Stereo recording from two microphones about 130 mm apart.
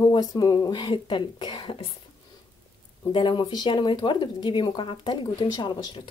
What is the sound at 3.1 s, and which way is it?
A woman's voice, 35° left (ahead or behind).